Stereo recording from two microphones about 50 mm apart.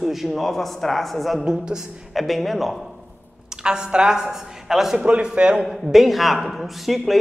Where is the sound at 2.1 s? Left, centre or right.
Centre.